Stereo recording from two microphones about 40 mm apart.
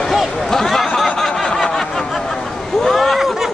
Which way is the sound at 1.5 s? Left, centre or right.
Centre.